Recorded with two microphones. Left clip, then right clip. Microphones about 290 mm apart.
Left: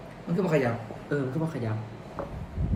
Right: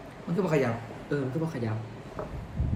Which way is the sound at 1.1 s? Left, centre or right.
Centre.